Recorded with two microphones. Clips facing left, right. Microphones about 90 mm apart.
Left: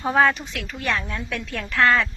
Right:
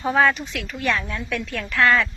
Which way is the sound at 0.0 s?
20° left (ahead or behind).